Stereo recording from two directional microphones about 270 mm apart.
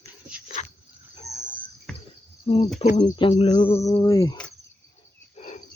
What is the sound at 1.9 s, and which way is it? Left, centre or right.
Cricket, centre.